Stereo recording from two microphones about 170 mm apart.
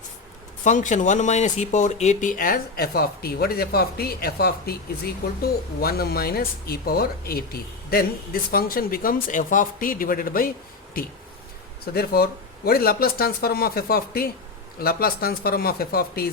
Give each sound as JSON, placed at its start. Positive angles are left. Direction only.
{"t": 0.6, "sound": "speech", "side_deg": 45}